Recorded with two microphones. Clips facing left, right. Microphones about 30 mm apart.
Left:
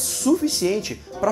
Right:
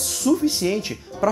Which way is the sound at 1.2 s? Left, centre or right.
Right.